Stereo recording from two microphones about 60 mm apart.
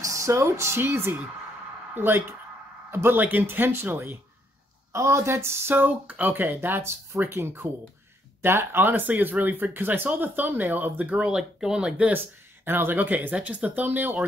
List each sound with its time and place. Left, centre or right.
0.0 s speech: right
4.9 s speech: right
5.8 s speech: right
11.1 s speech: centre
12.6 s speech: right